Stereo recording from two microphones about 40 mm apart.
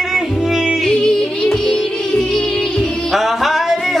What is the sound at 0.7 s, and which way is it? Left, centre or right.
Music, centre.